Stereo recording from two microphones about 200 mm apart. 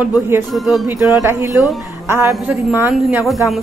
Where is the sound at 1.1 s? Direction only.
15° right (ahead or behind).